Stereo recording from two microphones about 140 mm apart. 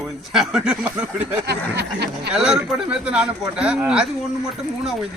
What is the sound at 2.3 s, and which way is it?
Speech, 5° right (ahead or behind).